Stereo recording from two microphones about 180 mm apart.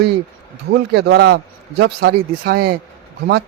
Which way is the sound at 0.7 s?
65° right (ahead or behind).